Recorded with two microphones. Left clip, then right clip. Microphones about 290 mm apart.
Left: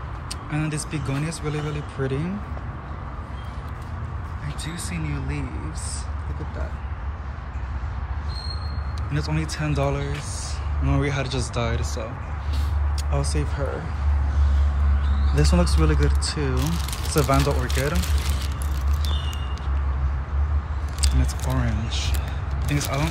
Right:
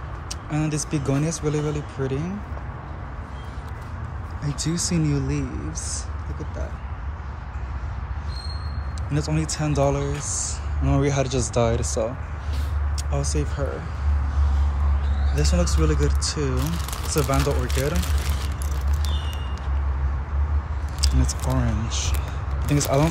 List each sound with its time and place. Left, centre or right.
0.5 s speech: centre
4.6 s speech: centre
9.1 s speech: centre
13.1 s speech: centre
15.3 s speech: centre
21.0 s keys jangling: centre
21.5 s speech: centre